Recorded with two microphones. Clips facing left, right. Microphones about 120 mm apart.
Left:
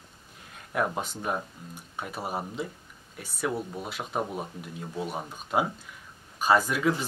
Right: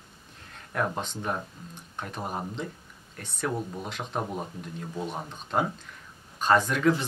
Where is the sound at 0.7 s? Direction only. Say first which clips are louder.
Left 1 dB; 5° left (ahead or behind).